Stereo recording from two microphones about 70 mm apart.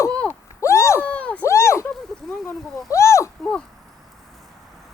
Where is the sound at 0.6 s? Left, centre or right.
Left.